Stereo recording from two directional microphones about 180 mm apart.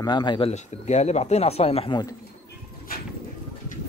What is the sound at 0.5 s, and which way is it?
Speech, 40° left (ahead or behind).